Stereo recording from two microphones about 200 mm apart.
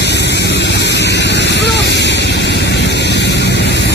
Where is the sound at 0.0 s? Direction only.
60° left (ahead or behind).